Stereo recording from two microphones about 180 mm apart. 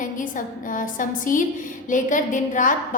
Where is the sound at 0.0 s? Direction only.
45° left (ahead or behind).